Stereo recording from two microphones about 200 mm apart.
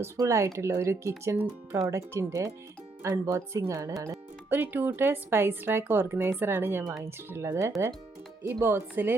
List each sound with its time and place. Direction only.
0.0 s speech: 15° right (ahead or behind)